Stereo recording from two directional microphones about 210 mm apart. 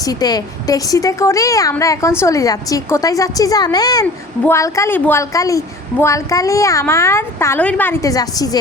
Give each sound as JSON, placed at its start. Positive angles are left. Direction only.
{"t": 0.0, "sound": "a woman's voice", "side_deg": 20}